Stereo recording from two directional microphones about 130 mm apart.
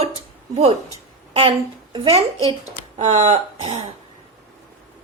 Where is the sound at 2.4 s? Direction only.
55° right (ahead or behind).